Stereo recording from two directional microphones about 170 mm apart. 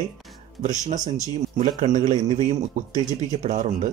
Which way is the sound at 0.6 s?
45° right (ahead or behind).